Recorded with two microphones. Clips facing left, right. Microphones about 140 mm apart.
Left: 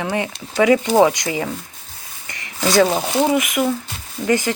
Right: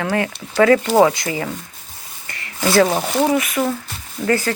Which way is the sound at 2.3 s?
20° left (ahead or behind).